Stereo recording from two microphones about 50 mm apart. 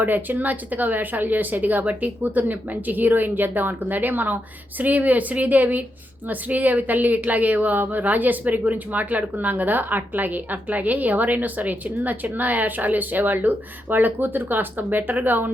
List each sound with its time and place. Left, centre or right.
0.0 s a woman's voice: right